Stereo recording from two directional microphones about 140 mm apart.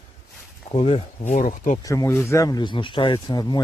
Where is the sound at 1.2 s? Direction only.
65° left (ahead or behind).